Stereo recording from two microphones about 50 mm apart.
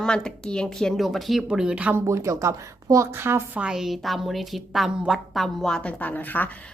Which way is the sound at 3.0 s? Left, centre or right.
Right.